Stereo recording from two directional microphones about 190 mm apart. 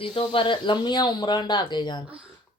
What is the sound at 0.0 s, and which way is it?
Speech, 25° left (ahead or behind).